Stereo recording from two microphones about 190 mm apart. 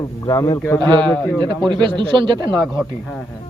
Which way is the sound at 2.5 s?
Centre (ahead or behind).